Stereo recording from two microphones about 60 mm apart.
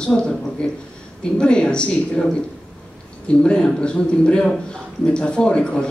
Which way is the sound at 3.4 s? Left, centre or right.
Centre.